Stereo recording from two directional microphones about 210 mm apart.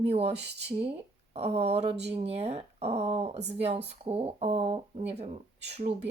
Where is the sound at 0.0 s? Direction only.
30° right (ahead or behind).